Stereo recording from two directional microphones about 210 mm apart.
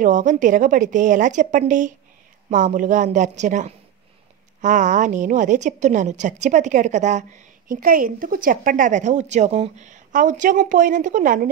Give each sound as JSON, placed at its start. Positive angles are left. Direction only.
{"t": 0.0, "sound": "a woman's voice", "side_deg": -40}